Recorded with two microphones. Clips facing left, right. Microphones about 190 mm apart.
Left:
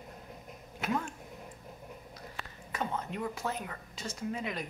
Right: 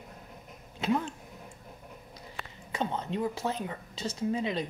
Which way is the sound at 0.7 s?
30° right (ahead or behind).